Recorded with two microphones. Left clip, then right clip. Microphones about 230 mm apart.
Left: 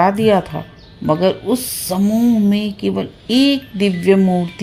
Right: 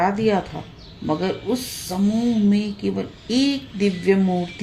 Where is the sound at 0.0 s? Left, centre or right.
Left.